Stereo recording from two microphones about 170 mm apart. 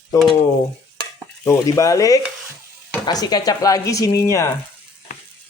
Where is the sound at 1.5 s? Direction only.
20° left (ahead or behind).